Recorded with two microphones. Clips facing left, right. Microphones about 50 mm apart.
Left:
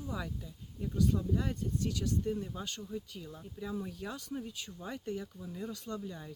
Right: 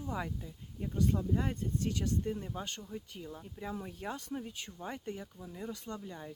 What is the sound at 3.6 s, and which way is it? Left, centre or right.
Speech, right.